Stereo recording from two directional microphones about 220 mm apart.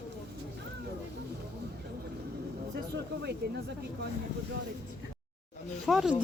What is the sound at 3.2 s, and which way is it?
Speech, 50° right (ahead or behind).